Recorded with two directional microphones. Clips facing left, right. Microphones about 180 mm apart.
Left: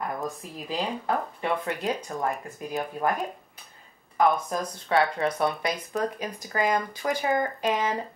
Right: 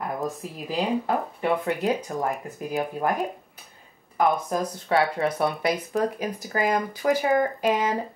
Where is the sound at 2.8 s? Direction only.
5° right (ahead or behind).